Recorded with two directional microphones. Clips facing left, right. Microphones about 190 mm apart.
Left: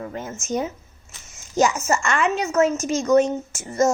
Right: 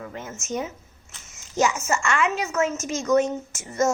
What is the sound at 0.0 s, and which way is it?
A child's voice, 35° left (ahead or behind).